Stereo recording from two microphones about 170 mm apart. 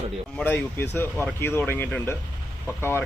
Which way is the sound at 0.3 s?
10° left (ahead or behind).